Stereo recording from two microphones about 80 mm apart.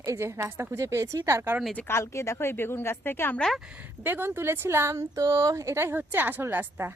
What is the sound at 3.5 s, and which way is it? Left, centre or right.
Speech, centre.